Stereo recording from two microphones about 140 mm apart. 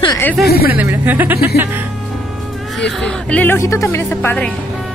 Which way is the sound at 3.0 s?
10° left (ahead or behind).